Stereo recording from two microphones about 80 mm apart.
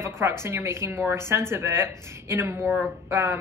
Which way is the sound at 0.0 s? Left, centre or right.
Right.